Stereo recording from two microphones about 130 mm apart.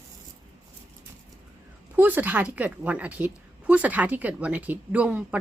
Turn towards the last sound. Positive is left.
turn(degrees=-10)  # may be behind; listen again after turning